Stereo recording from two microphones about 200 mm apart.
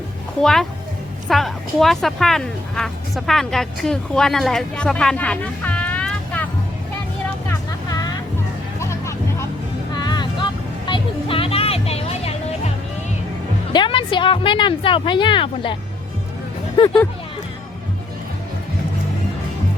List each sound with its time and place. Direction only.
0.4 s a child's voice: centre (ahead or behind)
7.5 s vehicle: 20° left (ahead or behind)
8.8 s music: 15° left (ahead or behind)
9.9 s vehicle: 20° left (ahead or behind)
10.8 s music: 25° left (ahead or behind)
13.7 s speech: 25° left (ahead or behind)